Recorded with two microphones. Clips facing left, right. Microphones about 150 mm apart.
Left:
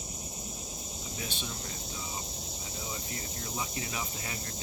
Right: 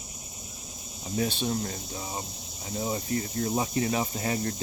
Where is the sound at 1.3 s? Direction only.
35° right (ahead or behind).